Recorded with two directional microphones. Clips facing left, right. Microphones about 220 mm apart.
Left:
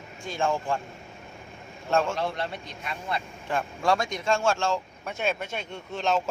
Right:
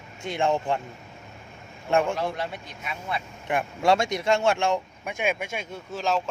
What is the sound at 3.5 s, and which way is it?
Speech, 20° right (ahead or behind).